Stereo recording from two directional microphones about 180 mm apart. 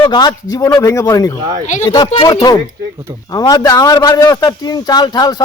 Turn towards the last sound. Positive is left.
turn(degrees=20)  # may be behind; listen again after turning